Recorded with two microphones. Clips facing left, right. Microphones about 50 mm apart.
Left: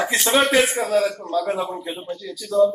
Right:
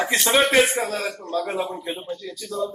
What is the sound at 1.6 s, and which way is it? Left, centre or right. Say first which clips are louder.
Speech: left 2 dB; left.